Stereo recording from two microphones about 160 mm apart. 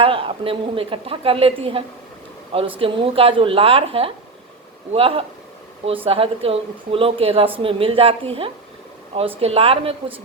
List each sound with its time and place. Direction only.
0.0 s a woman's voice: 35° right (ahead or behind)